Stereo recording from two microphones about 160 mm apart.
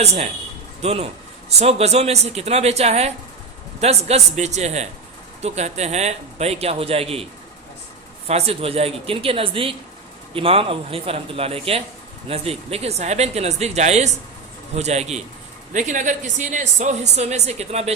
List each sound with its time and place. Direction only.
0.0 s a man's voice: 40° right (ahead or behind)
8.3 s a man's voice: 40° right (ahead or behind)